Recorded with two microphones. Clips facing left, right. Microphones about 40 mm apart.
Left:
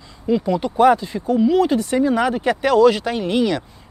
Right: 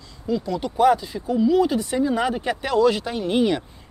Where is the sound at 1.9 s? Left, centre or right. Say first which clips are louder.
Left 4 dB; left.